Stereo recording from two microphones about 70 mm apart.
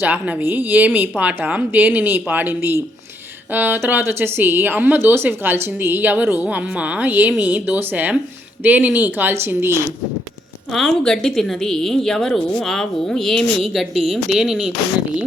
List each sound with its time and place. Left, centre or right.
0.0 s a woman's voice: right
10.7 s a woman's voice: centre